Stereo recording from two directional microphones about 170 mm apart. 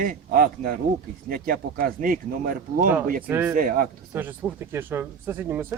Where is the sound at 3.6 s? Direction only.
55° right (ahead or behind).